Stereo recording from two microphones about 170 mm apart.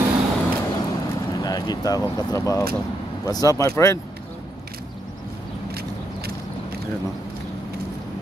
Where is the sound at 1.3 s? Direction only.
25° left (ahead or behind).